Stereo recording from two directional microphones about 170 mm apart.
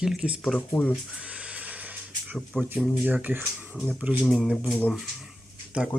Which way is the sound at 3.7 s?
5° left (ahead or behind).